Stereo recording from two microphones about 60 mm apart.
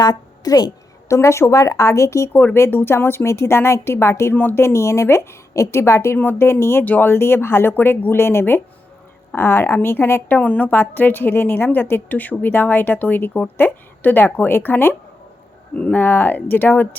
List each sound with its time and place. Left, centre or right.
0.0 s a woman's voice: left
1.0 s a woman's voice: left
2.3 s a woman's voice: left
4.4 s a woman's voice: left
4.6 s a woman's voice: left
6.8 s a woman's voice: left
10.3 s a woman's voice: left
15.7 s speech: left
16.0 s a woman's voice: left